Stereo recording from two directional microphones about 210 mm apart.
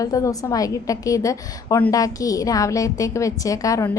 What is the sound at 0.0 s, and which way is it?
A woman's voice, 15° left (ahead or behind).